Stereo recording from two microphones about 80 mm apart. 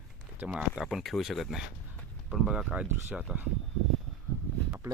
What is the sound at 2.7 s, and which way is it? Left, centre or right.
Speech, right.